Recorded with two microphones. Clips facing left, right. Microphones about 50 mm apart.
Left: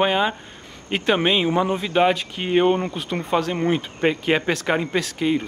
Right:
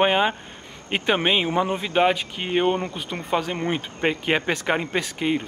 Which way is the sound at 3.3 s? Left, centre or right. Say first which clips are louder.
Left 3 dB; centre.